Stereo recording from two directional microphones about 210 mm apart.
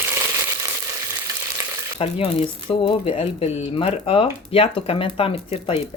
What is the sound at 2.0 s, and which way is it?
Speech, 30° left (ahead or behind).